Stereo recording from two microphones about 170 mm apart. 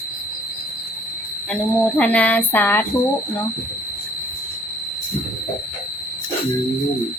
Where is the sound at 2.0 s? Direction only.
10° left (ahead or behind).